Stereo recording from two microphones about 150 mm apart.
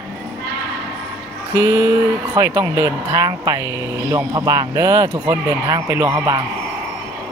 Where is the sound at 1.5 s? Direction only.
15° right (ahead or behind).